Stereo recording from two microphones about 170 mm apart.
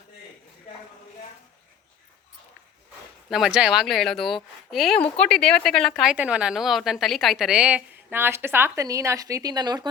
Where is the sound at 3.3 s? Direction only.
5° right (ahead or behind).